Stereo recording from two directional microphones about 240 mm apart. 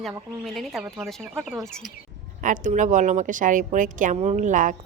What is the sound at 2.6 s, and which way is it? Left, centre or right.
A woman's voice, right.